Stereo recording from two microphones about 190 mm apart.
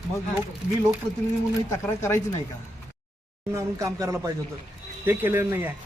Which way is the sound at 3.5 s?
15° right (ahead or behind).